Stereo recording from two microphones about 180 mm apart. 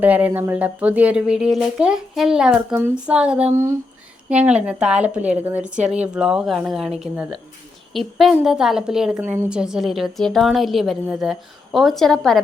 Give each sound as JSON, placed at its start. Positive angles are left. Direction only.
{"t": 0.0, "sound": "a woman's voice", "side_deg": -10}